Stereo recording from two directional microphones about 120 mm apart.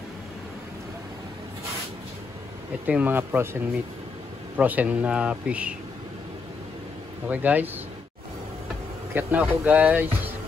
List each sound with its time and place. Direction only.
2.9 s speech: 15° right (ahead or behind)
4.6 s speech: 10° right (ahead or behind)
7.2 s speech: 15° right (ahead or behind)
9.1 s speech: 15° right (ahead or behind)